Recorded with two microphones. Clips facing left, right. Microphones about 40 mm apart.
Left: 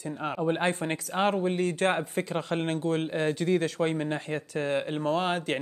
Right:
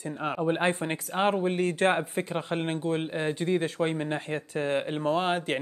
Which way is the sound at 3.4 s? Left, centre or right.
Right.